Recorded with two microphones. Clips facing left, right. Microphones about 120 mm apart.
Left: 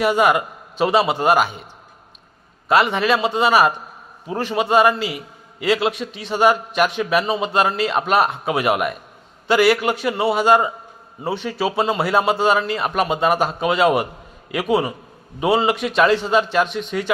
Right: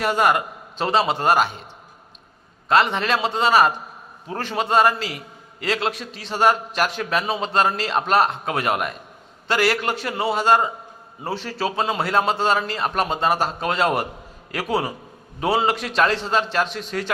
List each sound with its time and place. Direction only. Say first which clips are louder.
0.0 s a man's voice: left 3 dB; centre (ahead or behind)
2.6 s a man's voice: left 2 dB; 5° left (ahead or behind)